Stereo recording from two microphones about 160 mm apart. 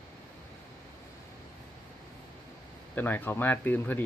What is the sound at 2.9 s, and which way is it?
Speech, 10° left (ahead or behind).